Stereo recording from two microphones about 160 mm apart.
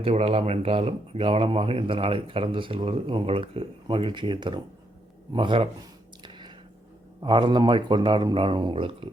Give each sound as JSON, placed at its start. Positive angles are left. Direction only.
{"t": 0.0, "sound": "speech", "side_deg": -40}
{"t": 6.2, "sound": "squish", "side_deg": -30}
{"t": 7.2, "sound": "speech", "side_deg": -30}